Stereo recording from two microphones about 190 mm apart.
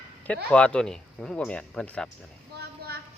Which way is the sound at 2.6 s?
55° right (ahead or behind).